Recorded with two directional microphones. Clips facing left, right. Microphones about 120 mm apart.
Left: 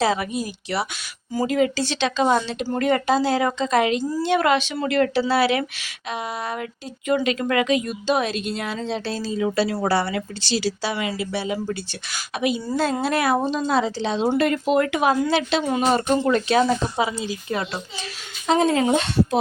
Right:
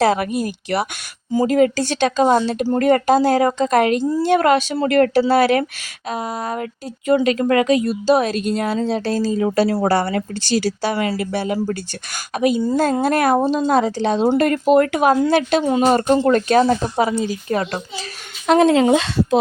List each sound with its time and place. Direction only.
0.0 s speech: 55° right (ahead or behind)
18.4 s speech: 65° right (ahead or behind); by 19.4 s 90° right